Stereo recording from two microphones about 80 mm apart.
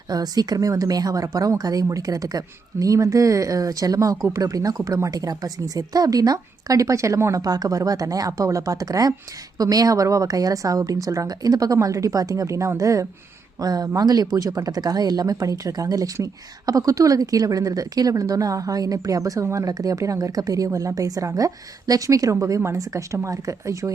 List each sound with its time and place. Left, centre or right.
0.1 s a woman's voice: right